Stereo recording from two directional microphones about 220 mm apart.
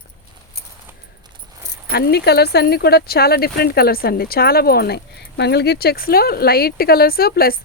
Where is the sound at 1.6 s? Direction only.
45° left (ahead or behind).